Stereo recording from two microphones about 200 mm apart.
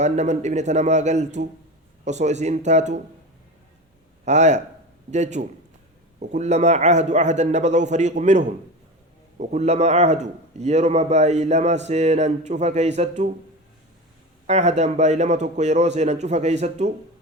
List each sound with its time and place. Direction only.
0.0 s a man's voice: 35° right (ahead or behind)
4.3 s a man's voice: 35° right (ahead or behind)
14.4 s a man's voice: 35° right (ahead or behind)